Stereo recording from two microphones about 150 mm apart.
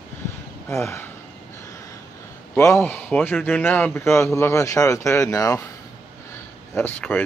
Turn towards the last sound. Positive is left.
turn(degrees=10)  # may be behind; listen again after turning